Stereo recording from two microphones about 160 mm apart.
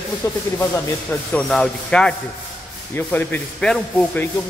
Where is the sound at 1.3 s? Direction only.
5° left (ahead or behind).